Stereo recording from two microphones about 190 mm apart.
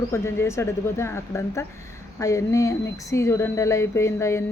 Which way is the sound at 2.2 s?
15° left (ahead or behind).